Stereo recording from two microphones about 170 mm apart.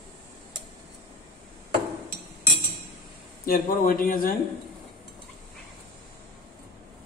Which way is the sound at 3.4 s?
60° left (ahead or behind).